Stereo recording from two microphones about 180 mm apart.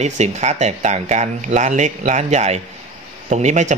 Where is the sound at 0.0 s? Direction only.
40° right (ahead or behind).